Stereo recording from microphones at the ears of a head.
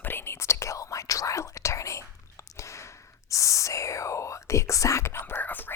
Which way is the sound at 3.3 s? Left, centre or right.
Left.